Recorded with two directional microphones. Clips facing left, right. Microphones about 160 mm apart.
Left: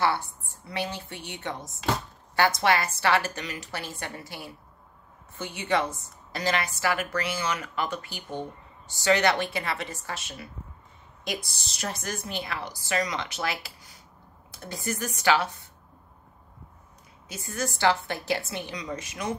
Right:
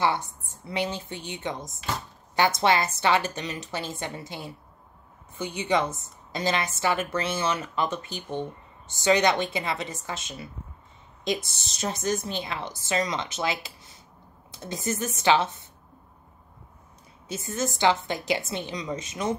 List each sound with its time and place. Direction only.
0.0 s a woman's voice: 20° right (ahead or behind)
17.3 s a woman's voice: 25° right (ahead or behind)